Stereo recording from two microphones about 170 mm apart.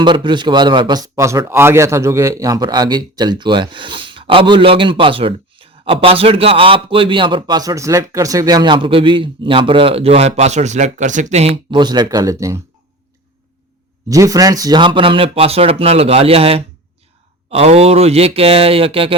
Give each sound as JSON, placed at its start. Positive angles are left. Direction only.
{"t": 0.0, "sound": "a man's voice", "side_deg": -25}
{"t": 14.1, "sound": "speech", "side_deg": -20}